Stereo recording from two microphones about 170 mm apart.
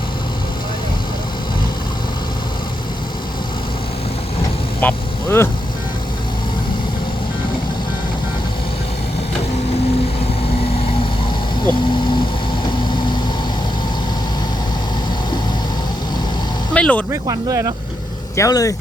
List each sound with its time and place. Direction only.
4.8 s vehicle: 10° left (ahead or behind)
16.7 s vehicle: 5° left (ahead or behind)
17.1 s speech: 15° right (ahead or behind)
18.3 s speech: 20° left (ahead or behind)